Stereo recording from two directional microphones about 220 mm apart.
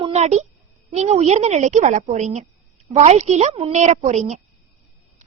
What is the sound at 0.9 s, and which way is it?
A woman's voice, 30° right (ahead or behind).